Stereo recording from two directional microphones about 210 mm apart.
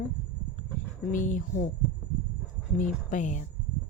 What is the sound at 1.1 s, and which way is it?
Speech, 35° left (ahead or behind).